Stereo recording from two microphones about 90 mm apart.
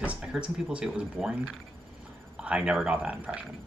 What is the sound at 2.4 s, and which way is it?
Speech, 10° right (ahead or behind).